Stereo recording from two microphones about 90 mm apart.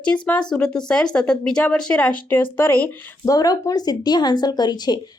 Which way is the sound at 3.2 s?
45° left (ahead or behind).